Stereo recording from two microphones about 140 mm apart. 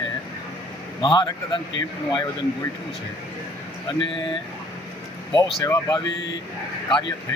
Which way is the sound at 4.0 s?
35° left (ahead or behind).